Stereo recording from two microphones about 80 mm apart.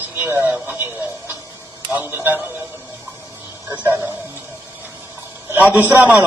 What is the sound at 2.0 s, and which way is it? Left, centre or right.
Speech, right.